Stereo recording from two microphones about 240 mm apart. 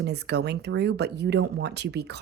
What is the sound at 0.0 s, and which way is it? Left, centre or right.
A woman's voice, right.